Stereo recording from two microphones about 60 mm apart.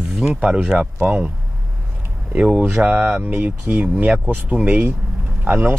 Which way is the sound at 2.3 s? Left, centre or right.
Centre.